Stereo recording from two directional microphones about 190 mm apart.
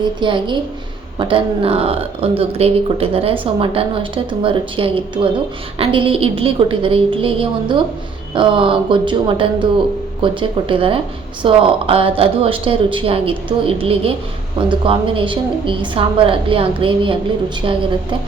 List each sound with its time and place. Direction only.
0.2 s speech: 25° right (ahead or behind)